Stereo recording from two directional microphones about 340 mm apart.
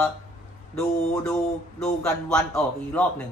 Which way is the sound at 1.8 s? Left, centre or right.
Centre.